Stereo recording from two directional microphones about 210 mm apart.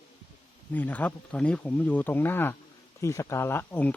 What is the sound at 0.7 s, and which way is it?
Speech, 5° left (ahead or behind).